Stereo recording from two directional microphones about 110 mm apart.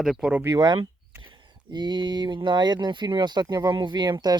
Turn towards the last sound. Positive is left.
turn(degrees=-40)  # may be behind; listen again after turning